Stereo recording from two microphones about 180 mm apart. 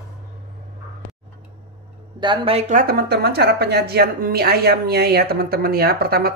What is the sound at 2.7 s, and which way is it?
A woman's voice, 60° right (ahead or behind).